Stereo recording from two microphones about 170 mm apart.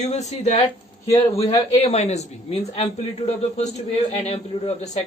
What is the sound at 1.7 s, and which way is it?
A man's voice, 40° left (ahead or behind).